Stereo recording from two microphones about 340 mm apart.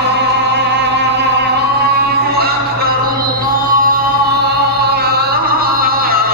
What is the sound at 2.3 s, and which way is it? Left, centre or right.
Music, right.